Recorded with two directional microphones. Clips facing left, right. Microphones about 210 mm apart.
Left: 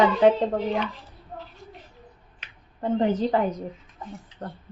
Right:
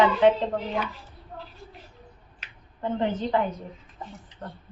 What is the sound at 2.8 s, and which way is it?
Speech, 35° left (ahead or behind).